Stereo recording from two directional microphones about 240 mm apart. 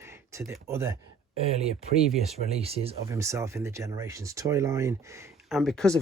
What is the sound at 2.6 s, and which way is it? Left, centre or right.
Speech, right.